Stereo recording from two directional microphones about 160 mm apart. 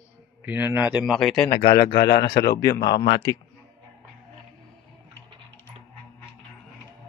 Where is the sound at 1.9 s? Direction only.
90° left.